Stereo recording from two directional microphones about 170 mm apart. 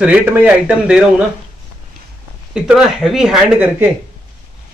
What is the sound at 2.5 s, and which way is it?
Speech, 5° right (ahead or behind).